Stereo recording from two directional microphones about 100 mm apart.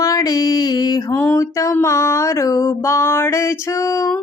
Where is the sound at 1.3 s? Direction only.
30° left (ahead or behind).